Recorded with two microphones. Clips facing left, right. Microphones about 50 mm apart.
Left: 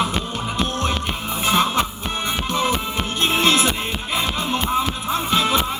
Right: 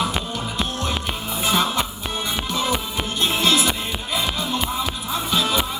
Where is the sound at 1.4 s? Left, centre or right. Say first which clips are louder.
Left 2 dB; left.